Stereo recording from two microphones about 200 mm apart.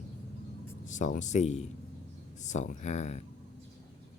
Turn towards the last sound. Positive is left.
turn(degrees=35)  # may be behind; listen again after turning